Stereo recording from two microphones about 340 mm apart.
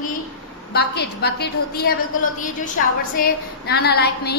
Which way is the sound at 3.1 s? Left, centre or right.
Left.